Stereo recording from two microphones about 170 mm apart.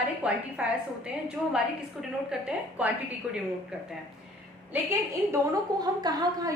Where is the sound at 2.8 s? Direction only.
10° right (ahead or behind).